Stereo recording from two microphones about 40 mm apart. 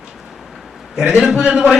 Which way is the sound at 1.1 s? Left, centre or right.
Centre.